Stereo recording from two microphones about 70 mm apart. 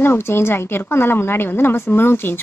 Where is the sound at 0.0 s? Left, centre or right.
Left.